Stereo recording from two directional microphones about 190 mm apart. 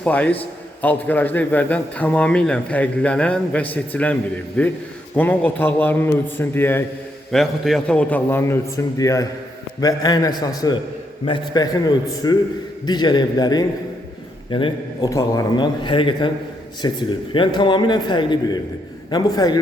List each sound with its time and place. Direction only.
0.0 s a man's voice: 5° left (ahead or behind)
7.3 s a man's voice: centre (ahead or behind); by 19.5 s 20° left (ahead or behind)